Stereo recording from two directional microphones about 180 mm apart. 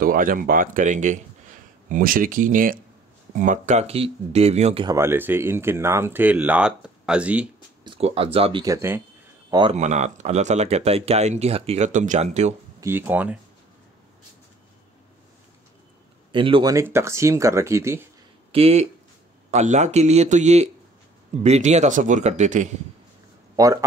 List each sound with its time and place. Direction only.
0.0 s speech: 50° right (ahead or behind); by 4.8 s 35° right (ahead or behind)
4.8 s speech: 15° right (ahead or behind)
7.8 s speech: 30° right (ahead or behind)
8.6 s speech: 15° right (ahead or behind)
9.5 s speech: 25° right (ahead or behind)
9.8 s speech: 40° right (ahead or behind)
12.8 s speech: 10° right (ahead or behind)
16.3 s speech: 30° right (ahead or behind)
16.7 s speech: 15° right (ahead or behind)
18.5 s speech: 35° right (ahead or behind)
23.5 s a man's voice: 20° right (ahead or behind)